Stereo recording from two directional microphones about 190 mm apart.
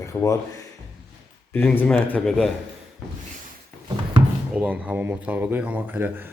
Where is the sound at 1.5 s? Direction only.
10° left (ahead or behind).